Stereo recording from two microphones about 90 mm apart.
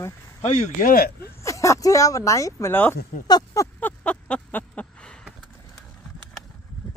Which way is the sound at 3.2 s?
40° left (ahead or behind).